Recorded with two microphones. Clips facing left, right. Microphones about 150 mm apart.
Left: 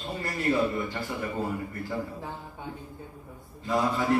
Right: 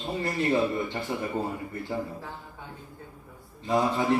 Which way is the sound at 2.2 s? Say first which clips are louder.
Left 3 dB; 20° left (ahead or behind).